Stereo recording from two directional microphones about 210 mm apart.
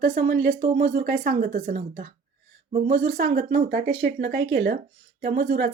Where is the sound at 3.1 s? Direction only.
50° right (ahead or behind).